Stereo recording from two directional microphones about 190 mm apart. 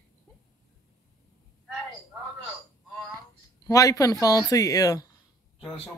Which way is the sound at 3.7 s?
15° left (ahead or behind).